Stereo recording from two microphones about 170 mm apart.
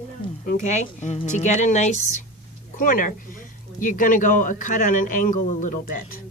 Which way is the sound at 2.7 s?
55° left (ahead or behind).